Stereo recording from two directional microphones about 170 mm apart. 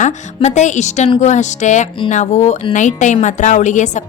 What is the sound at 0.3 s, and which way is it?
A woman's voice, 40° left (ahead or behind).